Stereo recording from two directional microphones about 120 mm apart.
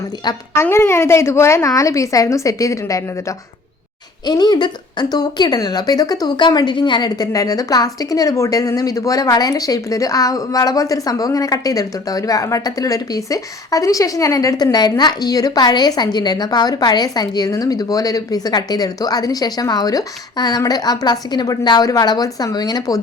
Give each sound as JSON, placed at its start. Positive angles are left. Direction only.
{"t": 0.5, "sound": "a woman's voice", "side_deg": 20}